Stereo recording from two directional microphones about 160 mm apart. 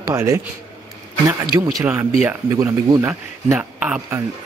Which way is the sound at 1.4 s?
25° right (ahead or behind).